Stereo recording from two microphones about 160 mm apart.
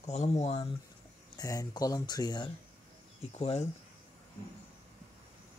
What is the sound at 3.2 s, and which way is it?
Speech, 40° left (ahead or behind).